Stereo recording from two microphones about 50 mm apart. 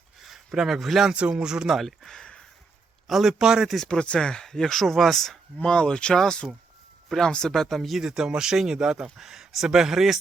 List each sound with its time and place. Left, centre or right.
0.3 s speech: centre
1.0 s speech: centre
1.8 s speech: centre
3.1 s speech: centre
3.8 s speech: centre
5.6 s speech: centre
7.5 s speech: centre
8.0 s speech: centre